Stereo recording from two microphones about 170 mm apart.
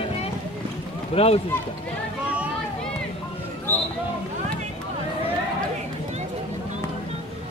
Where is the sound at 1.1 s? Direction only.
35° left (ahead or behind).